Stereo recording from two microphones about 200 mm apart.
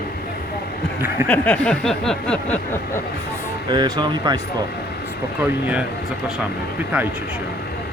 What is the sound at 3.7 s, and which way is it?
Speech, 20° right (ahead or behind).